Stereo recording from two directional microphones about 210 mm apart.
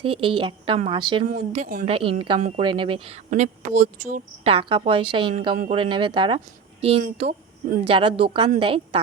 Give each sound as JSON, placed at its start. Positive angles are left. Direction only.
{"t": 0.0, "sound": "a woman's voice", "side_deg": -25}
{"t": 1.3, "sound": "a woman's voice", "side_deg": -35}
{"t": 3.2, "sound": "a woman's voice", "side_deg": -35}